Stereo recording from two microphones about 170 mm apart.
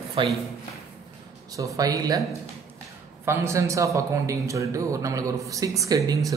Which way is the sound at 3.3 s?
15° right (ahead or behind).